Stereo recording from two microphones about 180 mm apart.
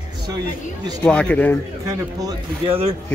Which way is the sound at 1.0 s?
5° left (ahead or behind).